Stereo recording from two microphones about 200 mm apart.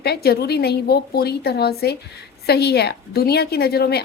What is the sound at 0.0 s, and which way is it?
A woman's voice, 50° left (ahead or behind).